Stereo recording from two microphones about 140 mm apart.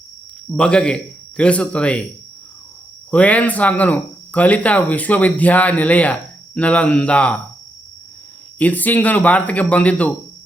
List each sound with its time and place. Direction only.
0.5 s speech: 5° left (ahead or behind)
3.1 s speech: 10° left (ahead or behind)
8.5 s speech: 10° left (ahead or behind)